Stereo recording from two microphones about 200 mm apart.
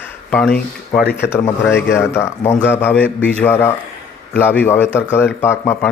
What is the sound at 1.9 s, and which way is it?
Speech, 15° left (ahead or behind).